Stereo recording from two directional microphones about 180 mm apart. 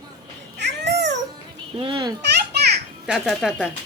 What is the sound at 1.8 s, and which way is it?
Babbling, 30° right (ahead or behind).